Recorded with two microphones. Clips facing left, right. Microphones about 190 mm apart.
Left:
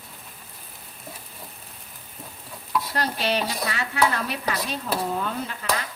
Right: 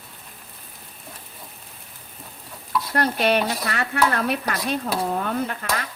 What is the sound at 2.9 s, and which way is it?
Stir, 55° right (ahead or behind).